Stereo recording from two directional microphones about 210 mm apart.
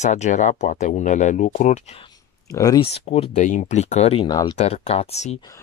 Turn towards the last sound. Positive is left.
turn(degrees=30)  # may be behind; listen again after turning